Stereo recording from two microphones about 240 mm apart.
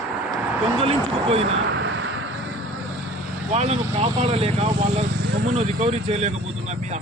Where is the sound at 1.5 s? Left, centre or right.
Right.